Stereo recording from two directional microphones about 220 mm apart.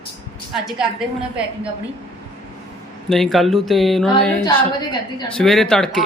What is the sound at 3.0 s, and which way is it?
Speech, centre (ahead or behind).